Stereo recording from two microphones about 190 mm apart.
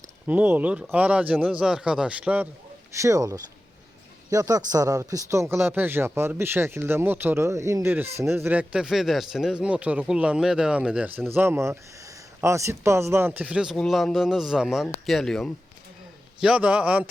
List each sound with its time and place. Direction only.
0.3 s speech: 10° right (ahead or behind)